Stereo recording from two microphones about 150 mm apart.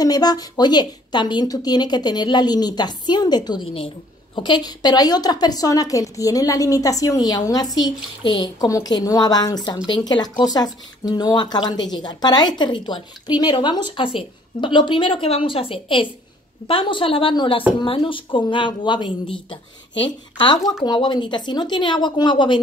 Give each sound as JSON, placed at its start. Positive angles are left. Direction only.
{"t": 0.0, "sound": "a woman's voice", "side_deg": 25}